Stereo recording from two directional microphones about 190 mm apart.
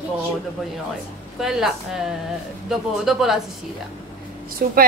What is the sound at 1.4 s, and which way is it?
A woman's voice, centre (ahead or behind).